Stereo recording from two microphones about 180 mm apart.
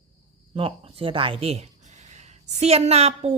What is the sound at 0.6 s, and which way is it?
Speech, 30° right (ahead or behind).